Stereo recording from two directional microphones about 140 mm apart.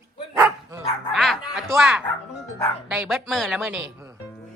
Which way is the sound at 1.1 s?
Centre (ahead or behind).